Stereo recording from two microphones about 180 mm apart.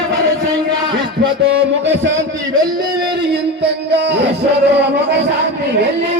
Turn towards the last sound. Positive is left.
turn(degrees=-70)  # may be behind; listen again after turning